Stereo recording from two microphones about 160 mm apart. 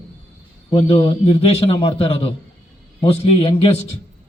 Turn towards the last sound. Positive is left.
turn(degrees=35)  # may be behind; listen again after turning